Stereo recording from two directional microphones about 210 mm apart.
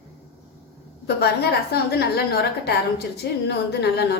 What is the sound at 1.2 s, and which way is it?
A woman's voice, 50° left (ahead or behind).